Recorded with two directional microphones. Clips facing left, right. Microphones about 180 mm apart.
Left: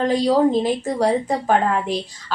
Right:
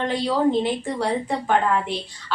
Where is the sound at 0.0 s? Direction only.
40° left (ahead or behind).